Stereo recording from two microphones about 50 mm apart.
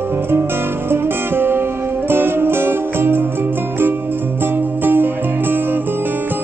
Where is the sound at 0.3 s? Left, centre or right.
Right.